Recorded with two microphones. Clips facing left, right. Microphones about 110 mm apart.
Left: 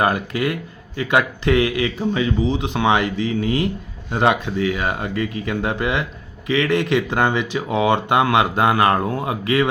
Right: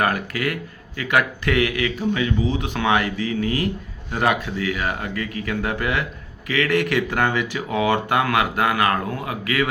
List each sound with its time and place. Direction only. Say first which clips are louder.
0.0 s speech: left 3 dB; 20° left (ahead or behind)